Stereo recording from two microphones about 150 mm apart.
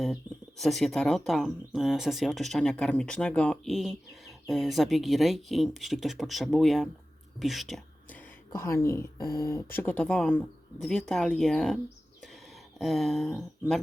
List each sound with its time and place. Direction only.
0.6 s speech: centre (ahead or behind)
8.5 s speech: 20° left (ahead or behind); by 11.8 s 5° left (ahead or behind)
12.8 s speech: centre (ahead or behind)